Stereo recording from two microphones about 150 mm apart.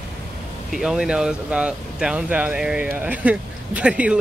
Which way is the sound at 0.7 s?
5° right (ahead or behind).